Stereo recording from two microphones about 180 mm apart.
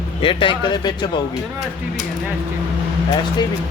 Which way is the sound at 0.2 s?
30° left (ahead or behind).